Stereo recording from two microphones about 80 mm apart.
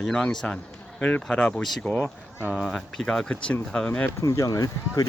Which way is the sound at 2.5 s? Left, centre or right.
Centre.